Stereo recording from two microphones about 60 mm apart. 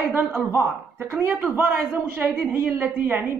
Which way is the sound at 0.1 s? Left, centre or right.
Right.